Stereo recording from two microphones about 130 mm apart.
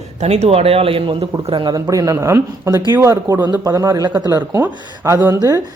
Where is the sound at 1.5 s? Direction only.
35° right (ahead or behind).